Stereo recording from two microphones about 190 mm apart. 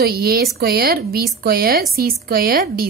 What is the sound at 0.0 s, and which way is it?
A woman's voice, 55° right (ahead or behind).